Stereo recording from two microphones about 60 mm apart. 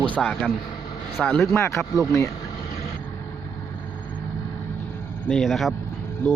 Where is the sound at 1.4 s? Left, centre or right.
Left.